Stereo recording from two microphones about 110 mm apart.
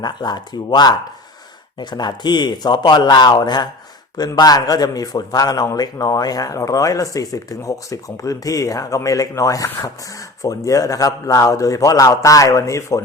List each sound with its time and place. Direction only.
0.0 s a man's voice: 40° left (ahead or behind)